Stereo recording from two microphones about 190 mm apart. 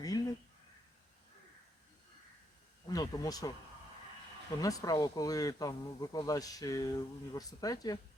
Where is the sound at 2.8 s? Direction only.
20° left (ahead or behind).